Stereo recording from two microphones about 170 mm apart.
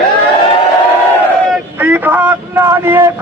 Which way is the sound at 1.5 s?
10° right (ahead or behind).